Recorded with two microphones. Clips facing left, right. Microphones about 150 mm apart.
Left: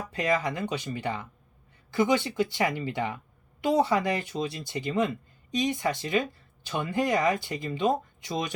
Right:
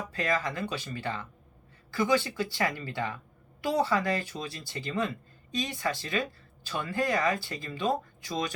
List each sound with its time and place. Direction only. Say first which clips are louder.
0.1 s speech: left 4 dB; 20° left (ahead or behind)